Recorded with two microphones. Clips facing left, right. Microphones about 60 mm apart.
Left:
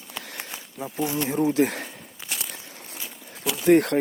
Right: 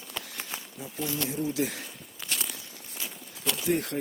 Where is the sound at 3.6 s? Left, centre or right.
Left.